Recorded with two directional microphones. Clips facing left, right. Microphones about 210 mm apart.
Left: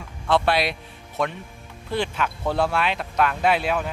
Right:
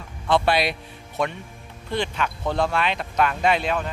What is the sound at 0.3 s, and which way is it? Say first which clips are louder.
A man's voice: even; centre (ahead or behind).